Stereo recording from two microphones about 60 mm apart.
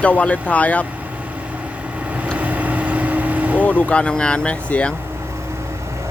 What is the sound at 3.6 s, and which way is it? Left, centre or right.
Speech, left.